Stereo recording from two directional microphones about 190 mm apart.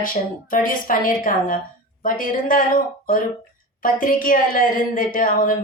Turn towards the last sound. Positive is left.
turn(degrees=45)  # may be behind; listen again after turning